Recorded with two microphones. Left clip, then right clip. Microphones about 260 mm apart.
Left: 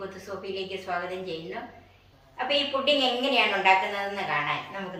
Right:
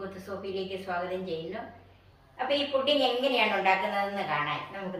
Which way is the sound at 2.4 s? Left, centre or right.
Centre.